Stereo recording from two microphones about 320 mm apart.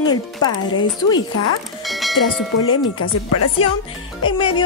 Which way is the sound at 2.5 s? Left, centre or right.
Left.